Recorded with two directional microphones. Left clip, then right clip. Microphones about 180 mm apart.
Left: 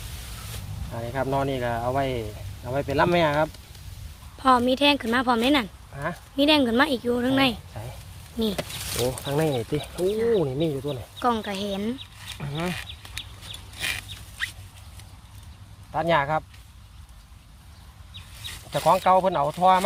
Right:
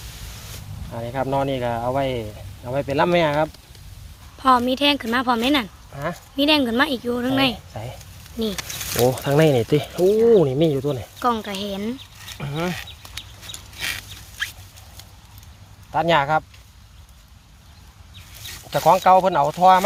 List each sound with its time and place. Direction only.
0.9 s speech: 55° right (ahead or behind)
4.4 s a woman's voice: centre (ahead or behind)
5.9 s speech: 55° right (ahead or behind)
6.3 s a woman's voice: centre (ahead or behind)
9.0 s speech: 50° right (ahead or behind)
11.2 s a woman's voice: centre (ahead or behind)
12.4 s speech: 65° right (ahead or behind)
13.7 s a sound: 10° right (ahead or behind)
15.9 s speech: 60° right (ahead or behind)
18.7 s speech: 65° right (ahead or behind)